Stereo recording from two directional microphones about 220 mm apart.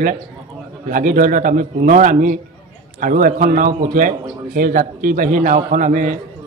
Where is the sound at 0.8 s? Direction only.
35° right (ahead or behind).